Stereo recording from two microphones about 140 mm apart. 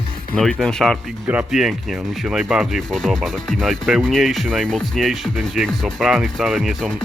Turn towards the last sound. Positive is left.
turn(degrees=0)  # may be behind; listen again after turning